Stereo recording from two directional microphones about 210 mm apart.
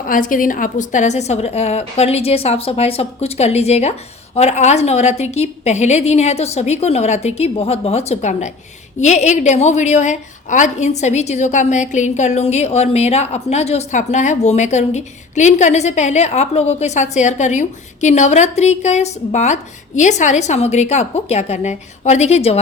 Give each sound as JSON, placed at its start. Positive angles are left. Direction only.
{"t": 0.0, "sound": "a woman's voice", "side_deg": 40}